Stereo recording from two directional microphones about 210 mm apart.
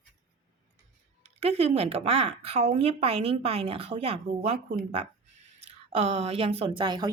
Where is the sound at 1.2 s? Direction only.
30° right (ahead or behind).